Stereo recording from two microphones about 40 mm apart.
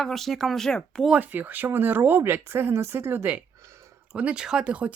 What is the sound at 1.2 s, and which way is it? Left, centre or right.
A woman's voice, right.